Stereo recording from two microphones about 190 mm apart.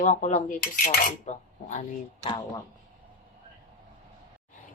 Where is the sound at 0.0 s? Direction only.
40° left (ahead or behind).